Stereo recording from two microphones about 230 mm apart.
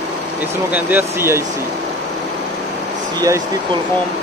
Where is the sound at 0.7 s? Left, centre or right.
Centre.